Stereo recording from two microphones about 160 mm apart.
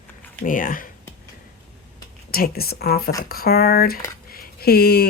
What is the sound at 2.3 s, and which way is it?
A woman's voice, 70° left (ahead or behind).